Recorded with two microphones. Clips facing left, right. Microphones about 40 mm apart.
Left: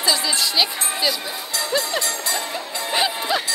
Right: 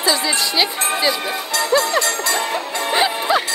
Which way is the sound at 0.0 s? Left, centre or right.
Centre.